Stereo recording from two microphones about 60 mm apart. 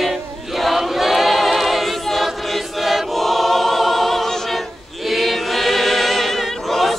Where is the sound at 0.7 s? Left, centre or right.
Centre.